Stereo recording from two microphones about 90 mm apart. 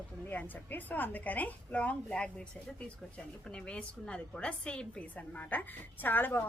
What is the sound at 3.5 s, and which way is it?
A woman's voice, 10° left (ahead or behind).